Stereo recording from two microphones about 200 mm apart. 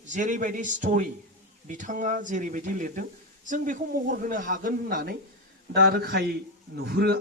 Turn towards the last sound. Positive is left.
turn(degrees=-50)  # may be behind; listen again after turning